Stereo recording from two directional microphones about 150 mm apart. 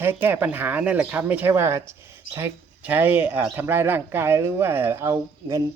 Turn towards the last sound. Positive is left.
turn(degrees=-20)  # may be behind; listen again after turning